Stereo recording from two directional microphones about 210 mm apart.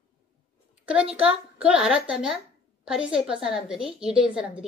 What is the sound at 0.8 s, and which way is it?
A woman's voice, 5° right (ahead or behind).